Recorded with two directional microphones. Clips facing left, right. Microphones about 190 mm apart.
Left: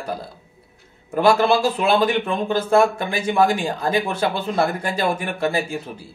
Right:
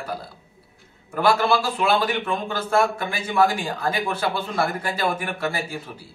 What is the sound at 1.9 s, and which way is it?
Speech, 20° left (ahead or behind).